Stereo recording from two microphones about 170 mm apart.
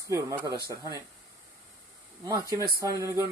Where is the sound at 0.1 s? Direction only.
20° right (ahead or behind).